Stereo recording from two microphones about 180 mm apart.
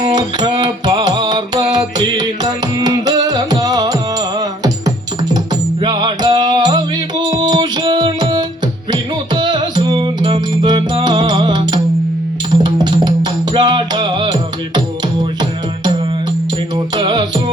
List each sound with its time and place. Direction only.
0.1 s music: 25° right (ahead or behind)
5.8 s music: 25° right (ahead or behind)